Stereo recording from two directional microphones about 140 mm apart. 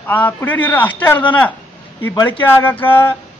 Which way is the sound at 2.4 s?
15° left (ahead or behind).